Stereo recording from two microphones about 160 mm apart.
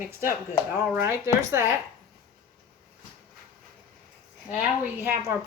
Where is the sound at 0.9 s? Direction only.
15° right (ahead or behind).